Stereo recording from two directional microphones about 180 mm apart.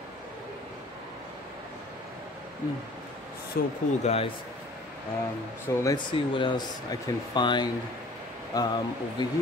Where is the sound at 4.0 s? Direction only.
35° left (ahead or behind).